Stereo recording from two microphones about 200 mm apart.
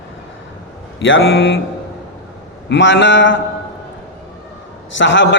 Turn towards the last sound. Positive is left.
turn(degrees=65)  # may be behind; listen again after turning